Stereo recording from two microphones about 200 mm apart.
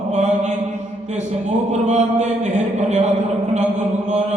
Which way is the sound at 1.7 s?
35° right (ahead or behind).